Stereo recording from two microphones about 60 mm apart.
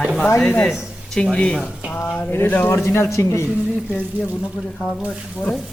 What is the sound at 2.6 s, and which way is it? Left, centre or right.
Speech, left.